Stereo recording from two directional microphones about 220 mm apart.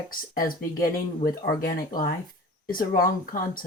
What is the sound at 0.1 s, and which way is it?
Speech, 40° left (ahead or behind).